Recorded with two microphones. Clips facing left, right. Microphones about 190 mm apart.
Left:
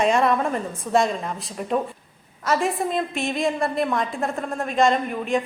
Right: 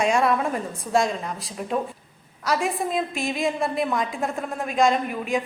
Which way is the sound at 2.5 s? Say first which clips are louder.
Left 2 dB; centre (ahead or behind).